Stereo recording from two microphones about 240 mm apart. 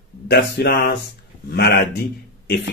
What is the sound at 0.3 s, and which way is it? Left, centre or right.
Speech, left.